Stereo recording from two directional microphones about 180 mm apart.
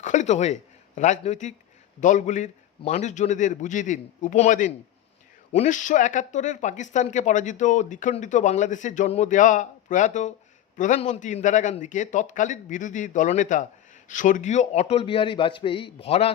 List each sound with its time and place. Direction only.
0.0 s a man's voice: 45° left (ahead or behind)